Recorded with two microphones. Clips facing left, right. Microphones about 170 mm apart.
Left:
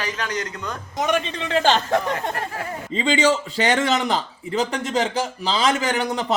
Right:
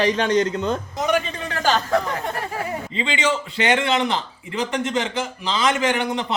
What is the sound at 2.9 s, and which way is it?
A man's voice, 40° left (ahead or behind).